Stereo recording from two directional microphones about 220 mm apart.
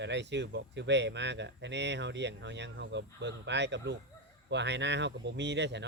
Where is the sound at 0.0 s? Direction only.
50° right (ahead or behind).